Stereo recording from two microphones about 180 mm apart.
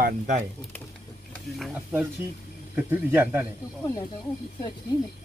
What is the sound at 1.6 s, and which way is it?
Speech, 5° right (ahead or behind).